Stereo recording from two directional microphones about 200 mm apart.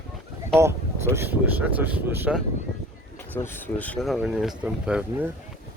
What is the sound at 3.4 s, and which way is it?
Speech, 10° left (ahead or behind).